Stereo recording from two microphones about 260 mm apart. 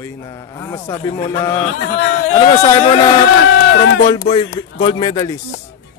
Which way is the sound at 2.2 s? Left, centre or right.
Left.